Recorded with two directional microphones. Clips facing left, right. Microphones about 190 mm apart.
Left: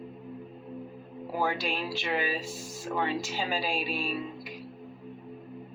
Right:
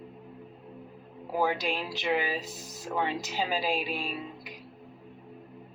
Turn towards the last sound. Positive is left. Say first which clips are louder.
# left 3 dB
turn(degrees=-20)  # may be behind; listen again after turning